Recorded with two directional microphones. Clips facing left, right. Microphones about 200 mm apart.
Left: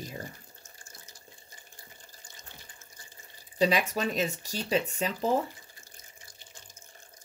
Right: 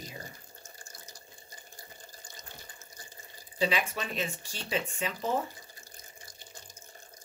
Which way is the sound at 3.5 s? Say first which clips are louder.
Left 4 dB; 40° left (ahead or behind).